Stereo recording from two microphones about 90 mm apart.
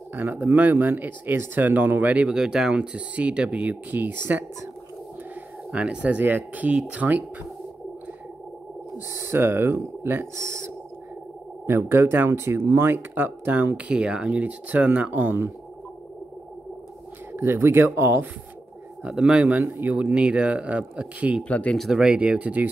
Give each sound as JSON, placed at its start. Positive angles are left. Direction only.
{"t": 0.1, "sound": "speech", "side_deg": -20}
{"t": 5.7, "sound": "speech", "side_deg": -10}
{"t": 8.9, "sound": "speech", "side_deg": -25}
{"t": 17.3, "sound": "speech", "side_deg": -25}
{"t": 19.0, "sound": "speech", "side_deg": -10}
{"t": 21.4, "sound": "speech", "side_deg": 10}
{"t": 21.7, "sound": "speech", "side_deg": -5}